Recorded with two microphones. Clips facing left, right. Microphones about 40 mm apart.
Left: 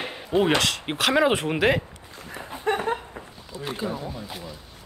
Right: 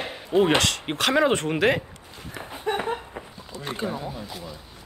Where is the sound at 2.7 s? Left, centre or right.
Left.